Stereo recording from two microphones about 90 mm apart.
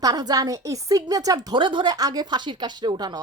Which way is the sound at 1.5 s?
65° right (ahead or behind).